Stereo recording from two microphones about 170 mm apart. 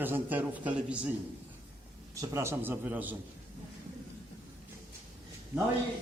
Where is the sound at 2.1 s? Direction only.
20° right (ahead or behind).